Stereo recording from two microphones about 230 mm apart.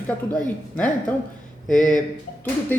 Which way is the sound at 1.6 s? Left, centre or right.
Left.